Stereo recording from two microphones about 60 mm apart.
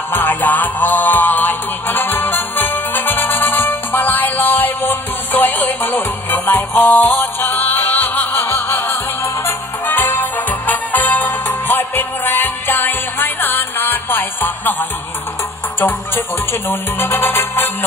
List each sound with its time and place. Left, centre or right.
0.1 s music: left
16.6 s music: left